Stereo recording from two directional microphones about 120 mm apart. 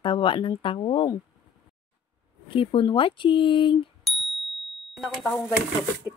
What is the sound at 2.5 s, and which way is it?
Speech, 45° left (ahead or behind).